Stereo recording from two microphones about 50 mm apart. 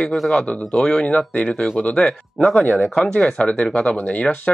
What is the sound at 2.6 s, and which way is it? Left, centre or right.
Speech, left.